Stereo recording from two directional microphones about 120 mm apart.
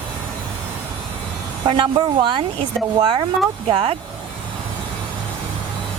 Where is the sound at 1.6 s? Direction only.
40° right (ahead or behind).